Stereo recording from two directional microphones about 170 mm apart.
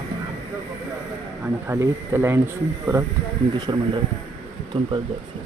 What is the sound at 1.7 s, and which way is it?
Speech, 15° right (ahead or behind).